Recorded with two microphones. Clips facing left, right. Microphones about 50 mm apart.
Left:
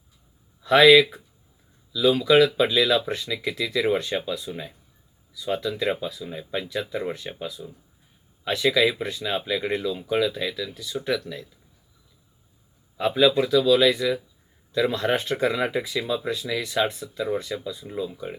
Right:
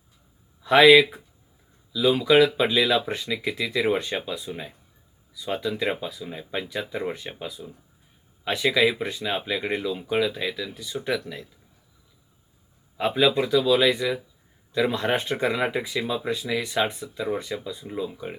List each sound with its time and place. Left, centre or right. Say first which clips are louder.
0.6 s speech: even; right
13.0 s speech: left 2 dB; right
17.8 s speech: even; centre